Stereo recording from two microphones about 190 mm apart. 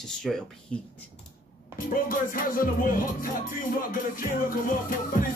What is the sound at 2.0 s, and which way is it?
Music, 50° left (ahead or behind).